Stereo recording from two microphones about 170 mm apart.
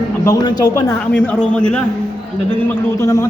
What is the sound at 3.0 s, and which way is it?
Speech, 15° left (ahead or behind).